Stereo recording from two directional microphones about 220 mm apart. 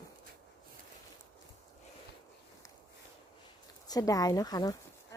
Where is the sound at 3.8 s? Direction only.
15° left (ahead or behind).